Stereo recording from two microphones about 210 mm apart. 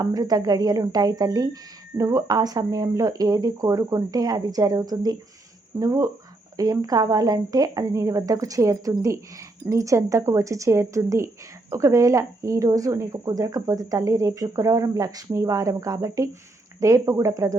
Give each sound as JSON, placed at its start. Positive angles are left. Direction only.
{"t": 0.0, "sound": "speech", "side_deg": -20}